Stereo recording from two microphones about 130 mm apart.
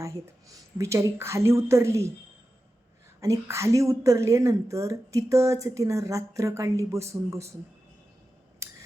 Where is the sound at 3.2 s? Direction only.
25° right (ahead or behind).